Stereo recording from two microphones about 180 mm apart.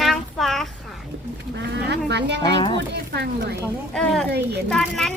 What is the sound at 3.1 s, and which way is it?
Speech, 65° right (ahead or behind).